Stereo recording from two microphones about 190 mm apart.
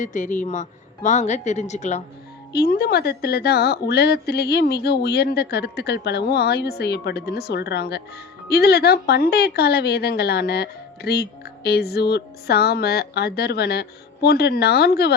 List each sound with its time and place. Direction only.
0.0 s a woman's voice: 40° left (ahead or behind)
2.5 s speech: 55° left (ahead or behind)